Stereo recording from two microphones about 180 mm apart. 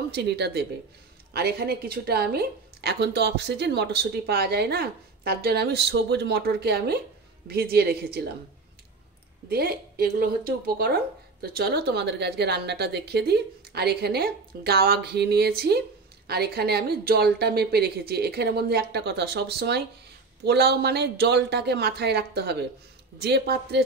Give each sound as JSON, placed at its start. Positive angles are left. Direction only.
{"t": 0.1, "sound": "a woman's voice", "side_deg": -70}
{"t": 9.5, "sound": "a woman's voice", "side_deg": -60}